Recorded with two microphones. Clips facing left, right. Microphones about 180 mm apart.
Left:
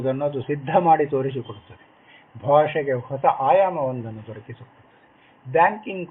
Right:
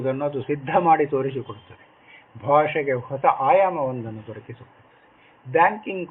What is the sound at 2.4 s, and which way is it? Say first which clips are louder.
Speech: left 2 dB; 25° left (ahead or behind).